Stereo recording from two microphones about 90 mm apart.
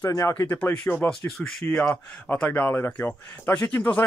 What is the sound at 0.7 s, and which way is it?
Speech, 20° left (ahead or behind).